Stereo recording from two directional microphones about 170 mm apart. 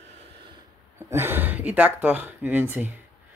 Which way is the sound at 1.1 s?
15° right (ahead or behind).